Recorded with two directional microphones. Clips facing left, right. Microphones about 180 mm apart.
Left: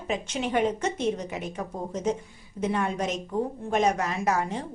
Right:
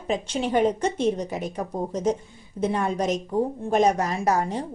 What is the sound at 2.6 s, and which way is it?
A woman's voice, 35° right (ahead or behind).